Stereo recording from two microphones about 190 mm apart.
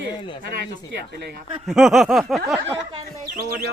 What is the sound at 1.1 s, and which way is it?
Speech, 60° right (ahead or behind).